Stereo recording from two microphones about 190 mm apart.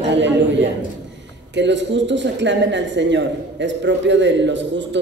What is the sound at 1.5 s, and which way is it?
A man's voice, 70° right (ahead or behind).